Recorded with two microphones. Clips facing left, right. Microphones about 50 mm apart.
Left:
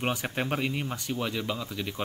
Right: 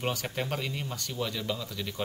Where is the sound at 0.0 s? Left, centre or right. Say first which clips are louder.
Left 2 dB; left.